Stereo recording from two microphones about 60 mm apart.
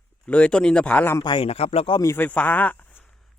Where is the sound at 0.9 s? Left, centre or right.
Left.